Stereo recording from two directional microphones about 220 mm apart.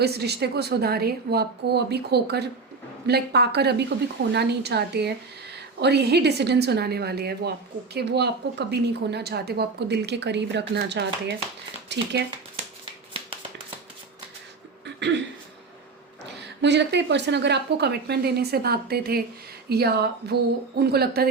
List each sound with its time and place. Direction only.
0.0 s speech: 50° right (ahead or behind)
14.8 s a sound: 50° right (ahead or behind)
16.2 s speech: 50° right (ahead or behind)